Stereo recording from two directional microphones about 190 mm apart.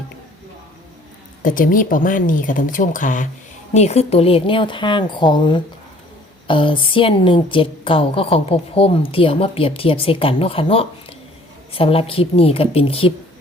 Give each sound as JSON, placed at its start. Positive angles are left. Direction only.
{"t": 1.4, "sound": "a woman's voice", "side_deg": 45}